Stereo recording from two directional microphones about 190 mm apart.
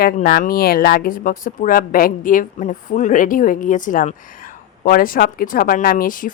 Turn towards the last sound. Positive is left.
turn(degrees=45)  # may be behind; listen again after turning